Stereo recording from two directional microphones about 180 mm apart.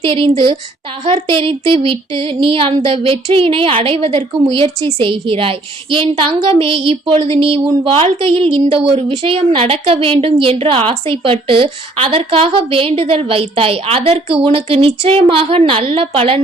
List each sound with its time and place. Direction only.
0.0 s a woman's voice: 30° right (ahead or behind)